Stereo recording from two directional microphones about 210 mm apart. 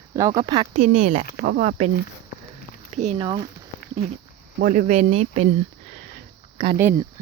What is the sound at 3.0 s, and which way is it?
Speech, 25° right (ahead or behind).